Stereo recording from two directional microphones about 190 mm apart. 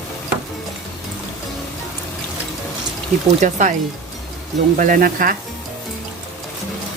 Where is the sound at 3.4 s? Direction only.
40° right (ahead or behind).